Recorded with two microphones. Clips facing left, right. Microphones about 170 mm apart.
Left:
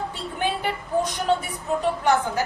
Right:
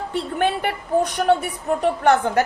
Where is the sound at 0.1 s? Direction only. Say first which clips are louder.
Right 6 dB; 60° right (ahead or behind).